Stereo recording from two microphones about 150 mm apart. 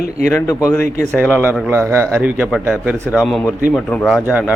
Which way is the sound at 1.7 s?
15° right (ahead or behind).